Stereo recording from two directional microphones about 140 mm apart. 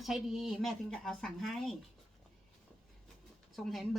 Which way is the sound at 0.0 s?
Centre (ahead or behind).